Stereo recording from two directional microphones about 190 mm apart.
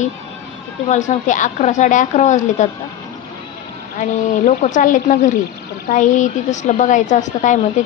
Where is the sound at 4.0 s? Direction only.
40° left (ahead or behind).